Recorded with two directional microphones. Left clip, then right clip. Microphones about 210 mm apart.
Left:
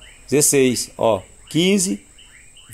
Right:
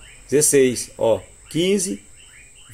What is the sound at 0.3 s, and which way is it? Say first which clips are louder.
Speech: even; 35° left (ahead or behind).